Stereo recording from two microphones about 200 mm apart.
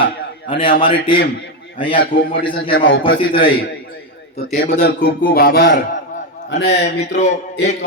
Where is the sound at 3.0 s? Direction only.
25° left (ahead or behind).